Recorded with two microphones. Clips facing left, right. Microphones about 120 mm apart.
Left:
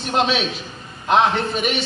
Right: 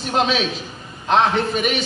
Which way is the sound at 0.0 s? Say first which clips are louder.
Even; centre (ahead or behind).